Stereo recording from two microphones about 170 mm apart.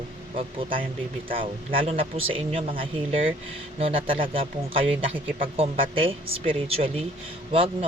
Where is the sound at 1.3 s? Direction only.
30° right (ahead or behind).